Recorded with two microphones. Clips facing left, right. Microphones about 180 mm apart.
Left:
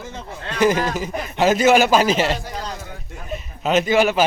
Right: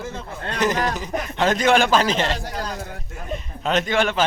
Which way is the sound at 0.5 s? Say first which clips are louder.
Left 4 dB; 10° left (ahead or behind).